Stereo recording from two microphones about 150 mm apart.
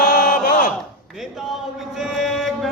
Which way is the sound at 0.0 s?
85° left.